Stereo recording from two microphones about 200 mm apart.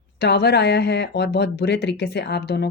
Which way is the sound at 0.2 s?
55° left (ahead or behind).